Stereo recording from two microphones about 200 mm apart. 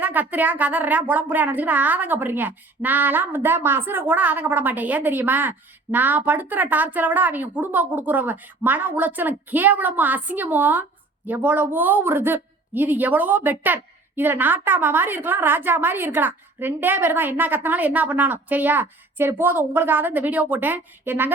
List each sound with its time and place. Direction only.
0.0 s speech: 10° right (ahead or behind)